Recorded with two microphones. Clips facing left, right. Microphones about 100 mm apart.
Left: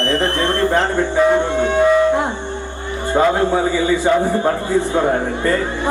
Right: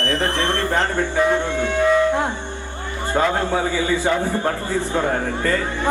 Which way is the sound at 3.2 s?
15° left (ahead or behind).